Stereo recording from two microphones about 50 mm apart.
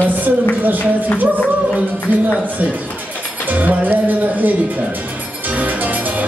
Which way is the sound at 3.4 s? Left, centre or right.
Right.